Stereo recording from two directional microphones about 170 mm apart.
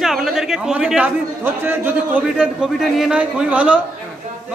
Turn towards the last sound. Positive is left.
turn(degrees=-5)  # may be behind; listen again after turning